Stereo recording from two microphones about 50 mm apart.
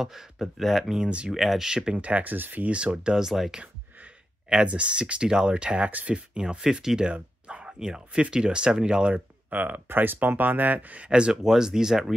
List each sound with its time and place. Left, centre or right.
0.0 s speech: centre
1.7 s speech: centre
2.0 s speech: right
3.3 s speech: centre
4.6 s speech: right
7.1 s a sound: right
8.2 s speech: centre; by 11.1 s right
11.1 s speech: right
11.4 s speech: centre